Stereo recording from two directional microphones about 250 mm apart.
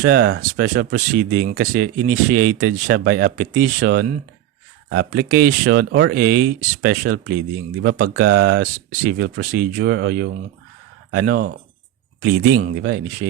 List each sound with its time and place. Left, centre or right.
0.0 s speech: right